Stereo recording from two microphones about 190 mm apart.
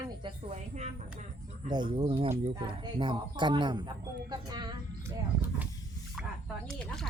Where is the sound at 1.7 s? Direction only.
25° right (ahead or behind).